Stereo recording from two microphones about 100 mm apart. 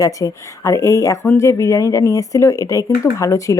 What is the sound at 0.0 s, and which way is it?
Speech, 35° left (ahead or behind).